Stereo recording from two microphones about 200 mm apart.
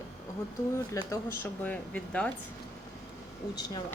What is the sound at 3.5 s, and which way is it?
Speech, 20° left (ahead or behind).